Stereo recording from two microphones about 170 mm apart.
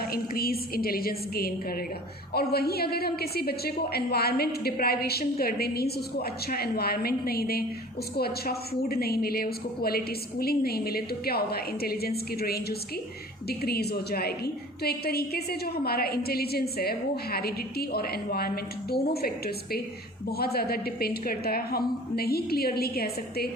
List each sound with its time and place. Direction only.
0.0 s a woman's voice: 60° left (ahead or behind)